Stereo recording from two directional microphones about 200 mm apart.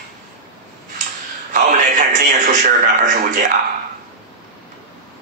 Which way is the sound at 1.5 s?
40° right (ahead or behind).